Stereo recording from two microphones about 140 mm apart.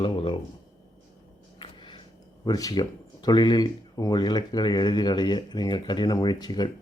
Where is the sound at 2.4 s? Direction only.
25° left (ahead or behind).